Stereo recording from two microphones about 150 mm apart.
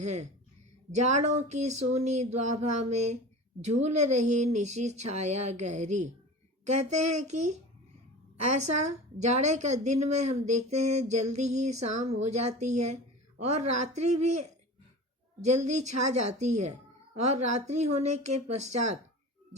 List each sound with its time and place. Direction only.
0.0 s speech: 50° right (ahead or behind)
9.1 s speech: 50° right (ahead or behind)